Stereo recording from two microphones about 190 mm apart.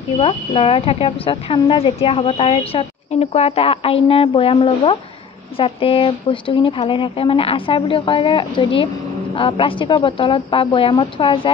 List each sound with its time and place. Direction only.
0.2 s speech: 30° left (ahead or behind)